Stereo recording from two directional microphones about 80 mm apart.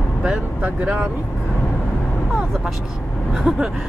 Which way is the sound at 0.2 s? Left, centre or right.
Centre.